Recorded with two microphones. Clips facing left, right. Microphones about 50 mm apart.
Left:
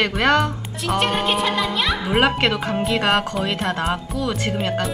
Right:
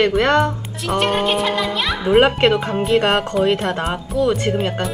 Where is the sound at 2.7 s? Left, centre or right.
Centre.